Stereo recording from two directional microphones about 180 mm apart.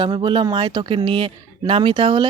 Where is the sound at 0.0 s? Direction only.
25° right (ahead or behind).